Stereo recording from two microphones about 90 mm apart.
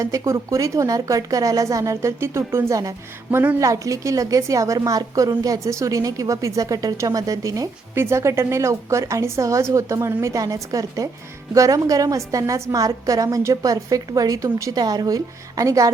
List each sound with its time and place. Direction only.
0.0 s a woman's voice: 35° right (ahead or behind)
3.3 s a woman's voice: 20° right (ahead or behind)
3.6 s a woman's voice: 40° right (ahead or behind)